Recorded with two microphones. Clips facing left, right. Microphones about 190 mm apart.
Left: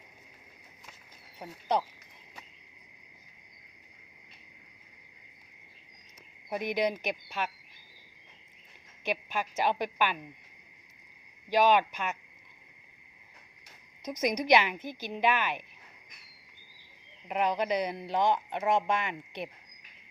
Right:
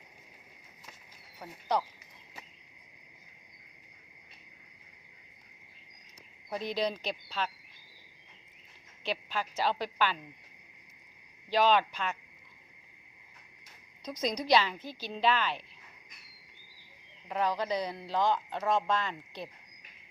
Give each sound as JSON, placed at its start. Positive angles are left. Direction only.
{"t": 1.4, "sound": "speech", "side_deg": 20}
{"t": 6.5, "sound": "a woman's voice", "side_deg": 15}
{"t": 9.0, "sound": "a woman's voice", "side_deg": 15}
{"t": 11.5, "sound": "a woman's voice", "side_deg": 15}
{"t": 14.0, "sound": "a woman's voice", "side_deg": 20}
{"t": 17.2, "sound": "speech", "side_deg": 20}